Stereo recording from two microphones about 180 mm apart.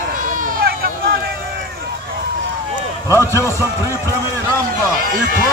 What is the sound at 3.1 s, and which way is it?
Speech, 15° left (ahead or behind).